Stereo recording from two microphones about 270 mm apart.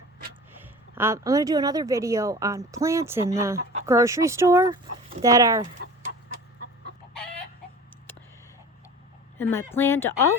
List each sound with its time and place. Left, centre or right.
0.6 s speech: centre
9.4 s speech: centre